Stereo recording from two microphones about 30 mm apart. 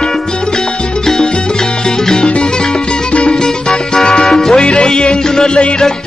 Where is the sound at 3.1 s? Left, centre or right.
Left.